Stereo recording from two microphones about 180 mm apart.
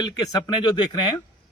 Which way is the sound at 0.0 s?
20° left (ahead or behind).